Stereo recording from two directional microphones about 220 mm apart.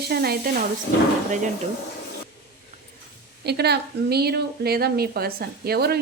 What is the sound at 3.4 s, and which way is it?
A woman's voice, 45° right (ahead or behind).